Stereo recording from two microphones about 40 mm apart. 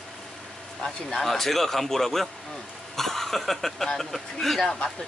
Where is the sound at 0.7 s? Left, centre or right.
Centre.